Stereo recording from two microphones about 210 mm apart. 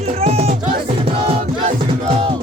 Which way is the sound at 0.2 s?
30° right (ahead or behind).